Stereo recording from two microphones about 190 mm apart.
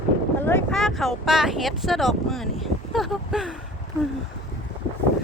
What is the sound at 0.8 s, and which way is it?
Speech, centre (ahead or behind).